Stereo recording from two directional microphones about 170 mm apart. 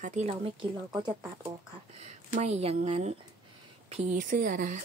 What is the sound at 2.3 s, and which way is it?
Speech, 40° right (ahead or behind).